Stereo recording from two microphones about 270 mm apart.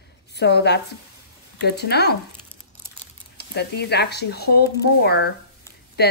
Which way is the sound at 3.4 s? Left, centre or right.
Left.